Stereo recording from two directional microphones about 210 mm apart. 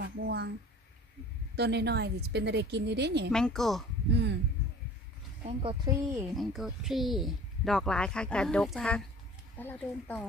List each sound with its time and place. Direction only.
0.0 s speech: 55° right (ahead or behind)
1.6 s a woman's voice: 55° right (ahead or behind)
3.3 s speech: 5° left (ahead or behind)
4.1 s speech: 55° right (ahead or behind)
5.4 s speech: 25° right (ahead or behind)
6.3 s speech: centre (ahead or behind)